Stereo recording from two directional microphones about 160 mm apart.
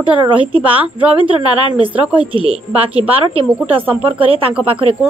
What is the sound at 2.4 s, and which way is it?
A woman's voice, 35° right (ahead or behind).